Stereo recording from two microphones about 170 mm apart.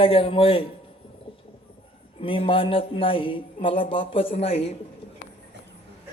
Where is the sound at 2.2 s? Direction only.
30° left (ahead or behind).